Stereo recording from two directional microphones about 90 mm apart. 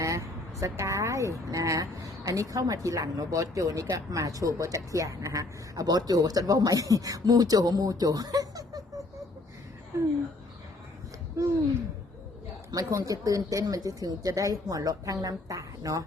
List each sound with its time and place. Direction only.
0.0 s speech: 35° right (ahead or behind)
12.7 s speech: 40° right (ahead or behind)